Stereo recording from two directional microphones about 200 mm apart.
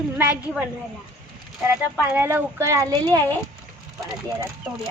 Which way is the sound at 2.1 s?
10° right (ahead or behind).